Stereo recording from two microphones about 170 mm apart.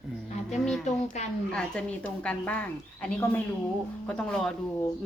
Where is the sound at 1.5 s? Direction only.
5° left (ahead or behind).